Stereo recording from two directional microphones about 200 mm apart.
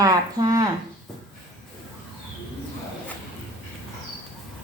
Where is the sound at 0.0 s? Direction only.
20° right (ahead or behind).